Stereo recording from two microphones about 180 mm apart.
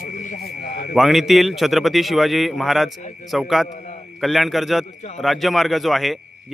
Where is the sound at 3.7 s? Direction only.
40° left (ahead or behind).